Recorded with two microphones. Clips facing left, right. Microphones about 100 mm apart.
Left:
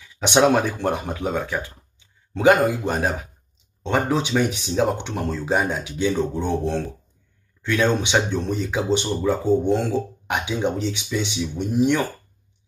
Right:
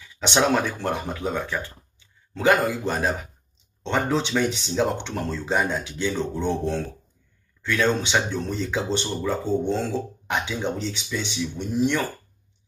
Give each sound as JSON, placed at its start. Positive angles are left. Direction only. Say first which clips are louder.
{"t": 0.2, "sound": "speech", "louder": "left 4 dB", "side_deg": 15}